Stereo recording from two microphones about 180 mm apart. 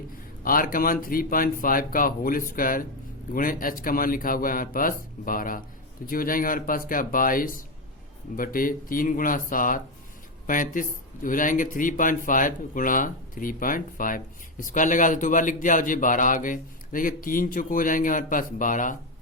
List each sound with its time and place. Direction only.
0.4 s a man's voice: 50° left (ahead or behind)